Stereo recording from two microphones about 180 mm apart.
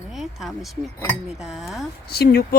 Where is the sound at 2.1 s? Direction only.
60° left (ahead or behind).